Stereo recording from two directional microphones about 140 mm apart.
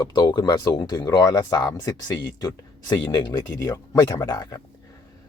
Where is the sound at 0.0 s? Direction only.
30° left (ahead or behind).